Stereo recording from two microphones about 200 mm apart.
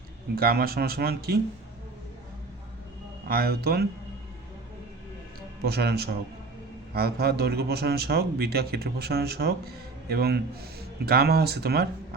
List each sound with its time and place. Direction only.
0.3 s speech: 50° right (ahead or behind)
3.2 s speech: 50° right (ahead or behind)
5.6 s speech: 50° right (ahead or behind)